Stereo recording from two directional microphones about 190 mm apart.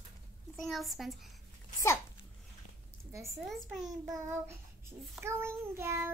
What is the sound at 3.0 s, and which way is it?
Speech, 15° right (ahead or behind).